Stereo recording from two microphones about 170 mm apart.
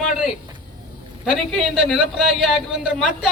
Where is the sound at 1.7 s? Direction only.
Centre (ahead or behind).